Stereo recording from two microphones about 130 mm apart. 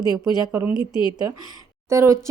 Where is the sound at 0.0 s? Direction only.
30° right (ahead or behind).